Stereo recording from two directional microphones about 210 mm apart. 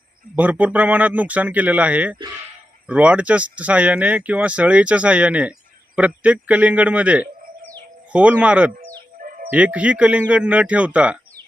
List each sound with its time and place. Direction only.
0.3 s speech: 5° right (ahead or behind)
9.2 s music: 40° right (ahead or behind)
9.5 s speech: 5° right (ahead or behind)